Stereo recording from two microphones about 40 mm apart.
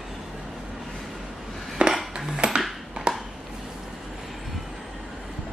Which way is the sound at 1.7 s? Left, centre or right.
Centre.